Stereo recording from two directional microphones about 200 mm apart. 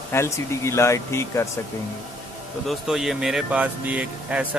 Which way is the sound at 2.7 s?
Centre (ahead or behind).